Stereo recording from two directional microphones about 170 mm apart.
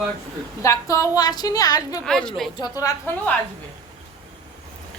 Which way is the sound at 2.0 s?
5° left (ahead or behind).